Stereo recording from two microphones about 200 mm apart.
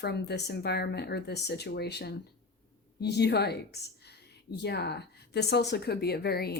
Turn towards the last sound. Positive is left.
turn(degrees=50)  # may be behind; listen again after turning